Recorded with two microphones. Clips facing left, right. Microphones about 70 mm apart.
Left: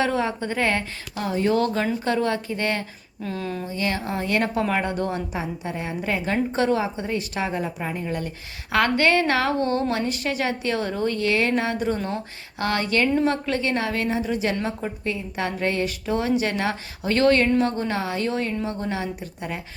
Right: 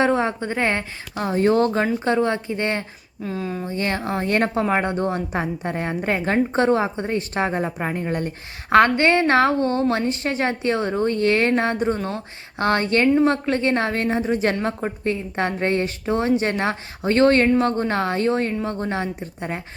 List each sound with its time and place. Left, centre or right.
0.0 s speech: right
3.2 s speech: centre
3.7 s a woman's voice: right
5.3 s a woman's voice: right
11.9 s speech: centre
12.5 s a woman's voice: right